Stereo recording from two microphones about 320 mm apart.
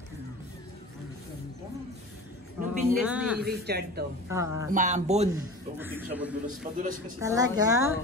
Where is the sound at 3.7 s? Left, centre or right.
Right.